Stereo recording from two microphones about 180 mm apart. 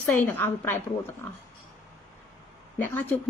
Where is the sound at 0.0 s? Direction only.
10° left (ahead or behind).